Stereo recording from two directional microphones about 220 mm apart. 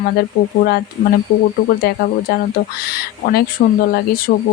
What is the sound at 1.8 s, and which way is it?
Speech, 45° left (ahead or behind).